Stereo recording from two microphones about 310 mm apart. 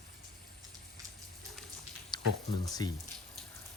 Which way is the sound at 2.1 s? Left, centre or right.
Centre.